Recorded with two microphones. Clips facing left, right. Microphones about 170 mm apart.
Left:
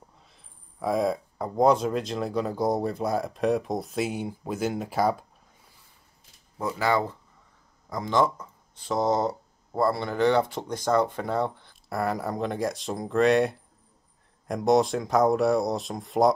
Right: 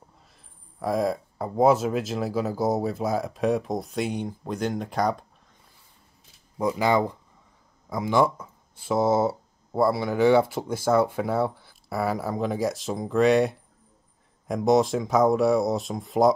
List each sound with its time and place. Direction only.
0.7 s speech: centre (ahead or behind)
6.6 s speech: 15° right (ahead or behind); by 16.3 s centre (ahead or behind)